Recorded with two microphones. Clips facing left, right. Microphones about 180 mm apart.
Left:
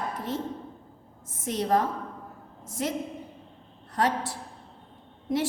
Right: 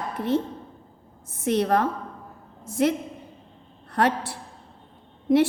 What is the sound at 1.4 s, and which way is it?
A woman's voice, 65° right (ahead or behind).